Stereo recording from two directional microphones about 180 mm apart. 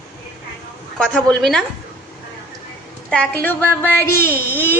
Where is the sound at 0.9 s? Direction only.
5° left (ahead or behind).